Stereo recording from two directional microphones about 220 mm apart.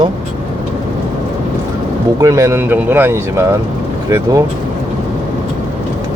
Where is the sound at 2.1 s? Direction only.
15° right (ahead or behind).